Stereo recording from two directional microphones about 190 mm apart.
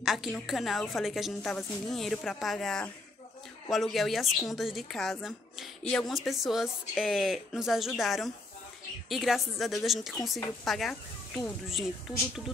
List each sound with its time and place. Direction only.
0.0 s a woman's voice: centre (ahead or behind)